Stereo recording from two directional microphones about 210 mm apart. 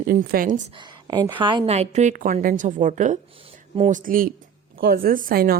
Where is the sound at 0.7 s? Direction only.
20° right (ahead or behind).